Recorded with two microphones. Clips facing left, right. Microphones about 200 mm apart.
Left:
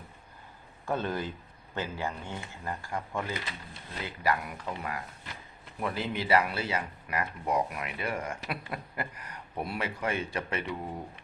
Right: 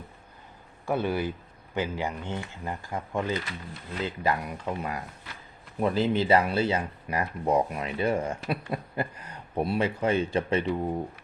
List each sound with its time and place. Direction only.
0.9 s a man's voice: 10° right (ahead or behind); by 10.9 s 30° right (ahead or behind)